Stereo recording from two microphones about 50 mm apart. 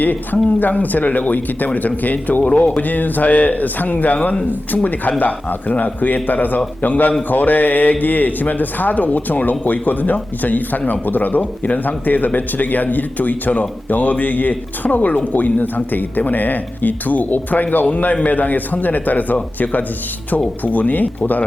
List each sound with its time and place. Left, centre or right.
0.0 s speech: left
2.4 s speech: left